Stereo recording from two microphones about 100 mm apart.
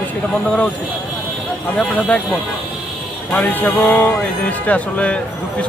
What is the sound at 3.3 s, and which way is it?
Music, 15° left (ahead or behind).